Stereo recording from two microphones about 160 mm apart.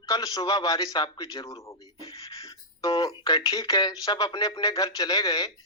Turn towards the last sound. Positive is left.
turn(degrees=25)  # may be behind; listen again after turning